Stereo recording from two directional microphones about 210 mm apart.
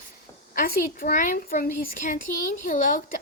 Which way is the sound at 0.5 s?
40° left (ahead or behind).